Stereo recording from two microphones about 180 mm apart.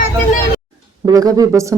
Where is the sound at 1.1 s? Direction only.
20° right (ahead or behind).